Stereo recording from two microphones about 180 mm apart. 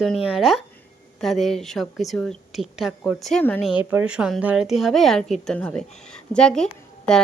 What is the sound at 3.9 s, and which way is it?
Speech, 5° right (ahead or behind).